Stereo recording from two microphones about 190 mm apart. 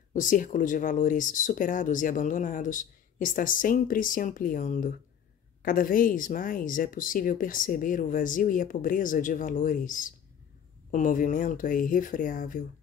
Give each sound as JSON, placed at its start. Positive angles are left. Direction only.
{"t": 0.1, "sound": "speech", "side_deg": 45}